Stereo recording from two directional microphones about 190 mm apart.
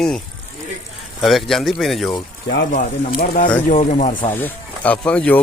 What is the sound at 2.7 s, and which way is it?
Speech, 45° left (ahead or behind).